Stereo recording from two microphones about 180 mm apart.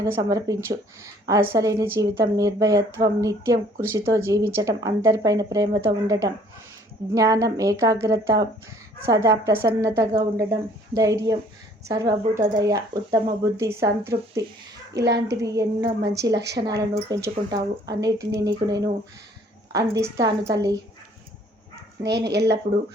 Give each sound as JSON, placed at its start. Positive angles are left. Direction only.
{"t": 0.0, "sound": "a woman's voice", "side_deg": -20}
{"t": 14.9, "sound": "speech", "side_deg": -70}
{"t": 15.3, "sound": "a woman's voice", "side_deg": -20}
{"t": 22.0, "sound": "speech", "side_deg": -70}